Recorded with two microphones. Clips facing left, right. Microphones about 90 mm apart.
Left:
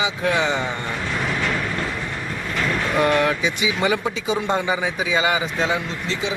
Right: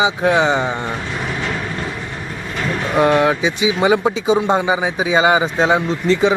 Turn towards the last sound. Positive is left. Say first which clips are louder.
# right 11 dB
turn(degrees=-45)  # may be behind; listen again after turning